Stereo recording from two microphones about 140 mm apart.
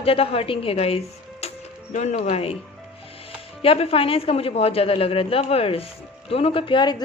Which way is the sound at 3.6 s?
45° left (ahead or behind).